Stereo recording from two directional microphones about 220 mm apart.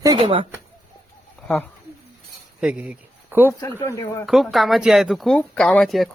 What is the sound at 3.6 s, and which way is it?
Speech, 10° left (ahead or behind).